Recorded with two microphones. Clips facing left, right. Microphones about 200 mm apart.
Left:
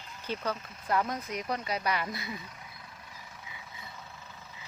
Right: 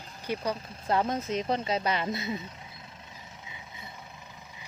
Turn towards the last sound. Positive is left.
turn(degrees=-20)  # may be behind; listen again after turning